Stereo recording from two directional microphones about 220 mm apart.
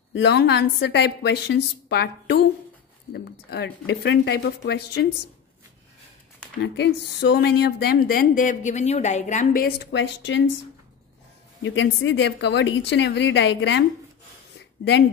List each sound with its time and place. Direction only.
0.1 s a woman's voice: 50° left (ahead or behind)
6.6 s a woman's voice: 50° left (ahead or behind)
11.6 s a woman's voice: 60° left (ahead or behind)